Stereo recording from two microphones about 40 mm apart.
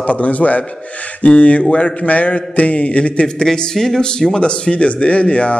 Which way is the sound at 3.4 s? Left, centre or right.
Centre.